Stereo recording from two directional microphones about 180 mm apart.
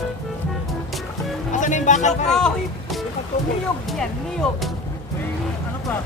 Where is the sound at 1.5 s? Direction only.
45° left (ahead or behind).